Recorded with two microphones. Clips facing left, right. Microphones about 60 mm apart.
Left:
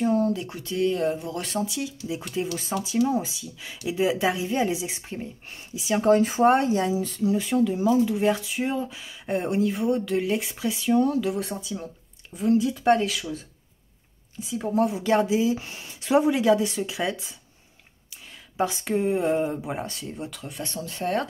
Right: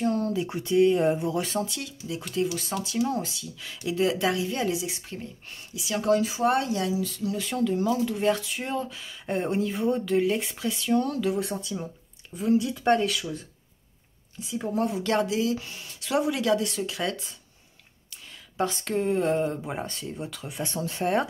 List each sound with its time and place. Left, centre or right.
0.0 s a sound: centre
0.5 s speech: right
1.3 s speech: centre
2.3 s speech: centre
7.3 s speech: centre
14.4 s speech: centre
18.6 s speech: centre
20.6 s speech: right